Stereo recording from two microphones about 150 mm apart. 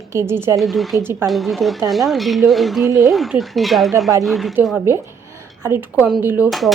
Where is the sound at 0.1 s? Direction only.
15° right (ahead or behind).